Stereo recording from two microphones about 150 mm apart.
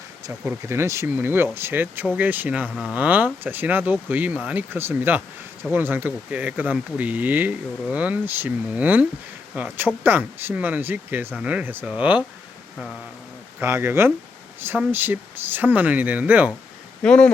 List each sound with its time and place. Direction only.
0.3 s speech: 15° right (ahead or behind)
13.6 s speech: 15° right (ahead or behind)
17.0 s speech: 5° left (ahead or behind)